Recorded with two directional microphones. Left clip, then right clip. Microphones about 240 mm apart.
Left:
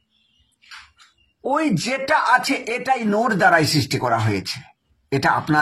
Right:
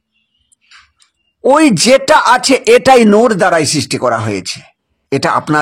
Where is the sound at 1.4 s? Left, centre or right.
Right.